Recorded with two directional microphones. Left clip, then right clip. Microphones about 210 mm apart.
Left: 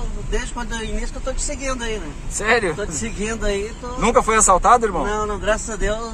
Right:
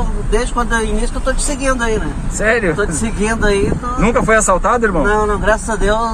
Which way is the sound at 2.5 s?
25° left (ahead or behind).